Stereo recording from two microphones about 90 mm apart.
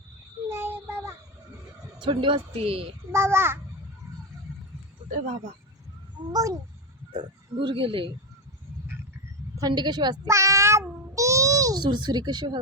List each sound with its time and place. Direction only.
0.4 s child singing: 30° right (ahead or behind)
2.0 s speech: 65° right (ahead or behind); by 2.8 s 90° right
3.1 s a child's voice: 30° right (ahead or behind)
6.3 s speech: 40° right (ahead or behind)
7.1 s speech: 60° right (ahead or behind)
9.6 s speech: 50° right (ahead or behind)
10.2 s a sound: 35° right (ahead or behind)
11.9 s speech: 55° right (ahead or behind)